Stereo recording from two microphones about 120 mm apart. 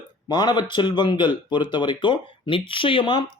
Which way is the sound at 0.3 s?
35° left (ahead or behind).